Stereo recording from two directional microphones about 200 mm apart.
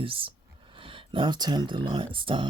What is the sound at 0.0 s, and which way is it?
Speech, 25° right (ahead or behind).